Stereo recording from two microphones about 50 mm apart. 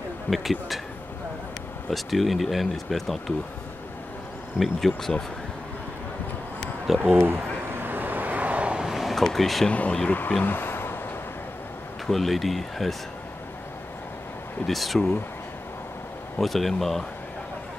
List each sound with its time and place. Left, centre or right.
0.3 s speech: centre
1.9 s speech: centre
4.6 s speech: centre
7.2 s vehicle: right
8.8 s a sound: centre
9.1 s speech: centre
9.7 s speech: left
10.0 s speech: left
10.4 s a sound: left
12.1 s speech: centre
14.7 s speech: centre
16.3 s speech: centre